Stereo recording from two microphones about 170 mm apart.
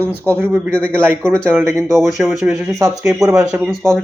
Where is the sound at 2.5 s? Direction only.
20° right (ahead or behind).